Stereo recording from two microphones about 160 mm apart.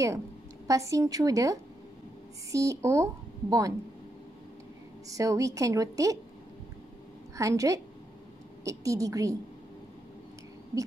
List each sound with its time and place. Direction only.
0.7 s speech: 20° right (ahead or behind)
5.1 s speech: 20° right (ahead or behind)
7.3 s speech: 20° right (ahead or behind)